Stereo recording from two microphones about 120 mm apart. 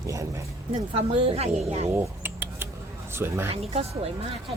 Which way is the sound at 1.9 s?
20° right (ahead or behind).